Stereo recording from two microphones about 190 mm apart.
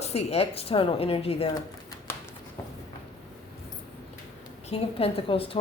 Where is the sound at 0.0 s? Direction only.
35° left (ahead or behind).